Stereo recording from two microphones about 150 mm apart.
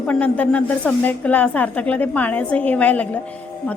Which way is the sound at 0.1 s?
10° left (ahead or behind).